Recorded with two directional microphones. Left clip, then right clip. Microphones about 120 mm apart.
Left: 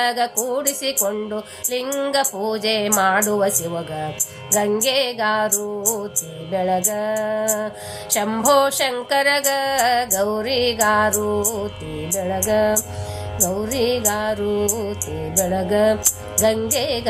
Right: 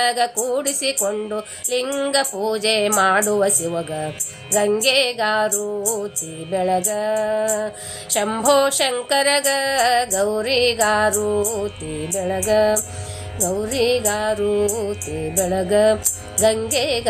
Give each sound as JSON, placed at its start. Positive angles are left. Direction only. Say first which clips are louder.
{"t": 0.0, "sound": "a woman's voice", "louder": "right 1 dB", "side_deg": -15}